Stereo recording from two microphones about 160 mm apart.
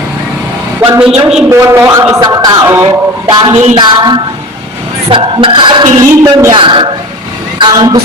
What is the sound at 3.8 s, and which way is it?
Speech, 25° right (ahead or behind).